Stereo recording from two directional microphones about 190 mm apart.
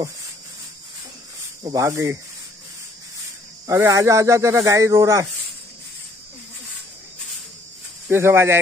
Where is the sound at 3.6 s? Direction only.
15° right (ahead or behind).